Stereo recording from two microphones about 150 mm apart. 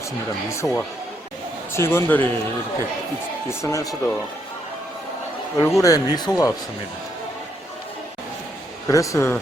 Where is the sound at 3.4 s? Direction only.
20° left (ahead or behind).